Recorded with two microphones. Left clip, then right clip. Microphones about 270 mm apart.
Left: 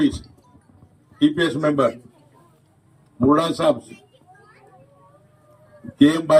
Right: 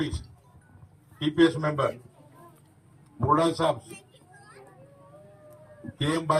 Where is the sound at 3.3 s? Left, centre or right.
Left.